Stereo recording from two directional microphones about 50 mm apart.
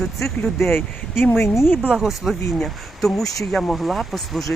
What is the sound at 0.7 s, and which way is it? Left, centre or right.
Speech, left.